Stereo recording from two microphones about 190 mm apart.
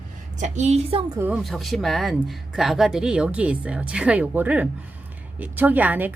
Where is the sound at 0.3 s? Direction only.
40° right (ahead or behind).